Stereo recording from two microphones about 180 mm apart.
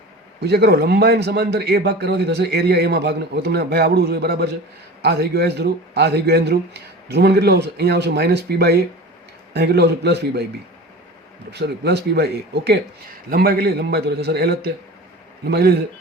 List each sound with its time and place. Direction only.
0.3 s a man's voice: 65° right (ahead or behind)
11.5 s a man's voice: 65° right (ahead or behind)